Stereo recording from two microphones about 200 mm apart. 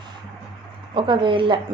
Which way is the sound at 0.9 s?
25° right (ahead or behind).